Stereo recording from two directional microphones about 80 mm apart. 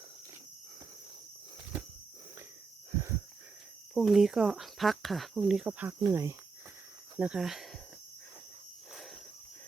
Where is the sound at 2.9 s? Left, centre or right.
Right.